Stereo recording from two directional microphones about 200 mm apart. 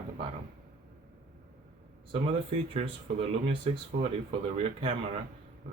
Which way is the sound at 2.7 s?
30° right (ahead or behind).